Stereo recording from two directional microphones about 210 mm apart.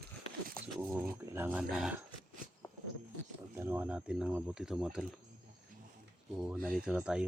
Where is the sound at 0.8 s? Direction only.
10° right (ahead or behind).